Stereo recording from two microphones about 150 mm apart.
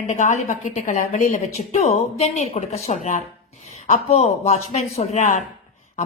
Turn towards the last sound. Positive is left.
turn(degrees=50)  # may be behind; listen again after turning